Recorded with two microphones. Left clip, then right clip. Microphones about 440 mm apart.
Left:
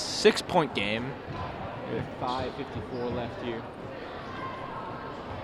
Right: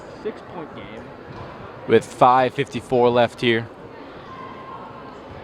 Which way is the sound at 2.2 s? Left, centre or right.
Right.